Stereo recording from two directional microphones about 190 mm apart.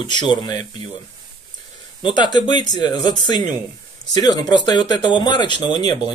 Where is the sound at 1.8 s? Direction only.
25° left (ahead or behind).